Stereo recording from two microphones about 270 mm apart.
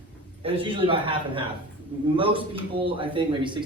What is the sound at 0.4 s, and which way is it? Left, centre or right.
Speech, centre.